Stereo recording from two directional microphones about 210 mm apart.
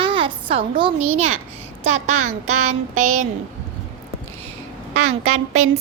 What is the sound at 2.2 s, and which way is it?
Music, 90° right.